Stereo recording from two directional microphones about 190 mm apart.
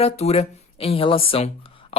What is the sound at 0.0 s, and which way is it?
Speech, 30° left (ahead or behind).